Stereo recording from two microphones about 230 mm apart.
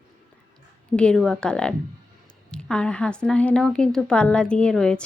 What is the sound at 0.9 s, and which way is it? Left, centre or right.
A woman's voice, centre.